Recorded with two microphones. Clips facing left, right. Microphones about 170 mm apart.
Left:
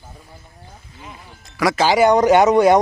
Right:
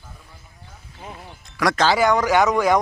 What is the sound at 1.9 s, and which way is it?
Speech, 20° left (ahead or behind).